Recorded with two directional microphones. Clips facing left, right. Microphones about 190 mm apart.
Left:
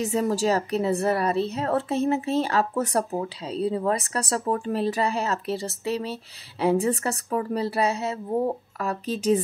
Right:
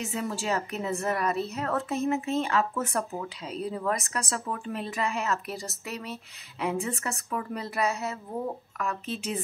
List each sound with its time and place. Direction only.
0.0 s a woman's voice: 40° left (ahead or behind)